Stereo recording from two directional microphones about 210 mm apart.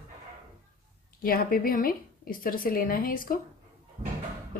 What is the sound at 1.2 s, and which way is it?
A woman's voice, 45° left (ahead or behind).